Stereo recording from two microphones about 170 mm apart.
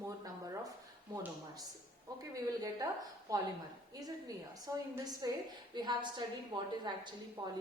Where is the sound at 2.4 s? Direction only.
20° right (ahead or behind).